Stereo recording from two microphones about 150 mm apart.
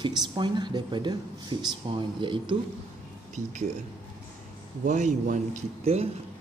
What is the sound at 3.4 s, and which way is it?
Speech, 55° right (ahead or behind).